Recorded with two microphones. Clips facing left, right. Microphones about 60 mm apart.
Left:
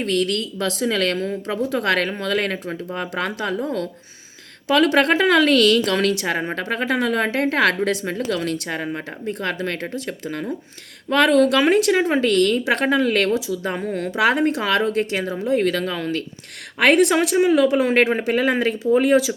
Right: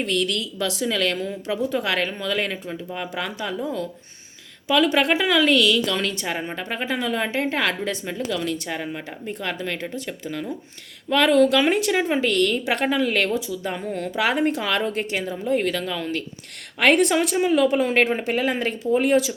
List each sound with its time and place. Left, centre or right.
0.0 s a woman's voice: left
1.7 s a woman's voice: left
9.2 s speech: left
13.9 s speech: left